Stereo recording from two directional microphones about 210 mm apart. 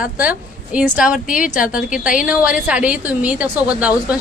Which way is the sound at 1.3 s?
40° left (ahead or behind).